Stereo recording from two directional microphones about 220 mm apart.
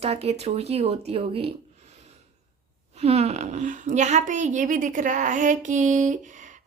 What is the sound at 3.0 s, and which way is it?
A woman's voice, 30° right (ahead or behind).